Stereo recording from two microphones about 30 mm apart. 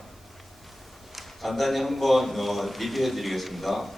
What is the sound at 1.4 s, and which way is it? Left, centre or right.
A man's voice, centre.